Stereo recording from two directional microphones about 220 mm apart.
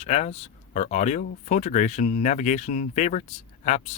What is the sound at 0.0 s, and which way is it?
Speech, 30° left (ahead or behind).